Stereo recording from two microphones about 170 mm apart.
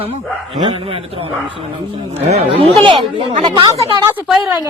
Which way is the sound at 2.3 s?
35° right (ahead or behind).